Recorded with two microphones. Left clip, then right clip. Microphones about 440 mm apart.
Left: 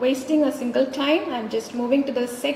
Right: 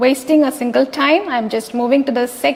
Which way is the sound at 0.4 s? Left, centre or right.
Right.